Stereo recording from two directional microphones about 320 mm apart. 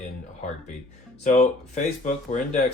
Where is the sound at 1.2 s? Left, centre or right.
Left.